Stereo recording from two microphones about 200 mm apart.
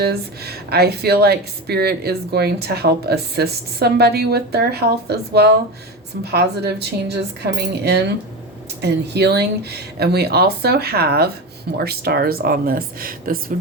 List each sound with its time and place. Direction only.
0.0 s speech: 50° right (ahead or behind)